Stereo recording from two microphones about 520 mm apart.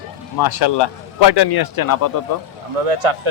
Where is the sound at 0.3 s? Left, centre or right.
Left.